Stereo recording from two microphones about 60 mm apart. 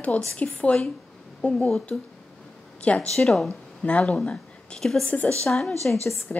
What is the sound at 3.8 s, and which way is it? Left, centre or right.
Speech, left.